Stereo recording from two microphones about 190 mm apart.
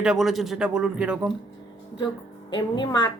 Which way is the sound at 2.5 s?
20° left (ahead or behind).